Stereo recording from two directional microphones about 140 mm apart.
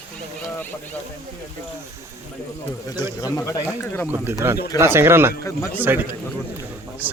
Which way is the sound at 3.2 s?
20° left (ahead or behind).